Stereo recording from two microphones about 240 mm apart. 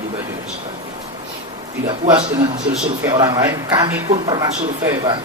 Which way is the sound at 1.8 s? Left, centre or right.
Centre.